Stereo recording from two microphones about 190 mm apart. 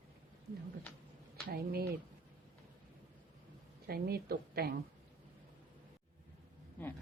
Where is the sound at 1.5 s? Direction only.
55° right (ahead or behind).